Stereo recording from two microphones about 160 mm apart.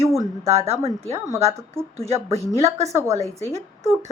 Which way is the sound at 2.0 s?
40° right (ahead or behind).